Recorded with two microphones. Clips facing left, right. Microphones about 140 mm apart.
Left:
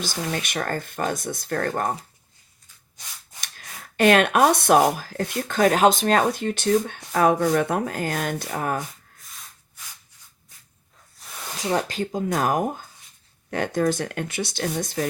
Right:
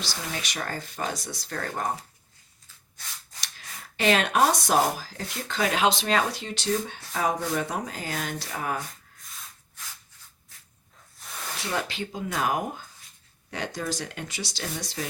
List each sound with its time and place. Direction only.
0.0 s speech: 50° left (ahead or behind)
3.9 s speech: 55° left (ahead or behind)
11.2 s a sound: centre (ahead or behind)
11.5 s speech: 40° left (ahead or behind)